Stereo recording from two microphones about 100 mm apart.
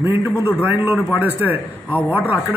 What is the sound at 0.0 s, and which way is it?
A man's voice, 20° right (ahead or behind).